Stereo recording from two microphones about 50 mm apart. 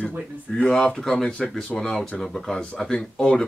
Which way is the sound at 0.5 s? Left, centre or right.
Centre.